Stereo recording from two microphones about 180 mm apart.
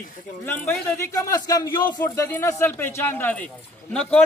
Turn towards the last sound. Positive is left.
turn(degrees=5)  # may be behind; listen again after turning